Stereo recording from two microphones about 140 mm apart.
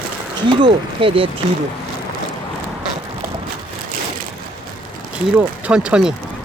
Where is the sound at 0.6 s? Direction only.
40° right (ahead or behind).